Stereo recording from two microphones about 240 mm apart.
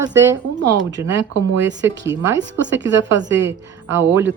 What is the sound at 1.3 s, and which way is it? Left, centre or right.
Speech, right.